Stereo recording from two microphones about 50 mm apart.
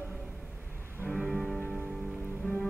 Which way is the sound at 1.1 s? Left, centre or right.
Centre.